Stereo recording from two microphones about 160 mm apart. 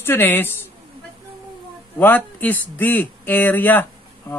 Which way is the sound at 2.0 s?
10° left (ahead or behind).